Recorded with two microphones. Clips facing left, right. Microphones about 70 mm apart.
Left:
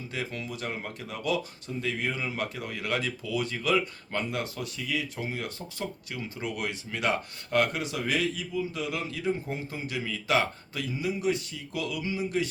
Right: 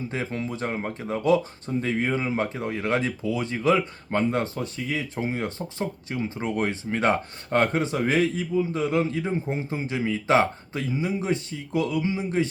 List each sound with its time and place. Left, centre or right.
0.1 s speech: right